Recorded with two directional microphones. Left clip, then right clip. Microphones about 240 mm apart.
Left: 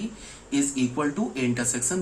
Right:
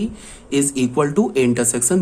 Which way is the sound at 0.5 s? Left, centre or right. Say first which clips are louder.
Right 8 dB; right.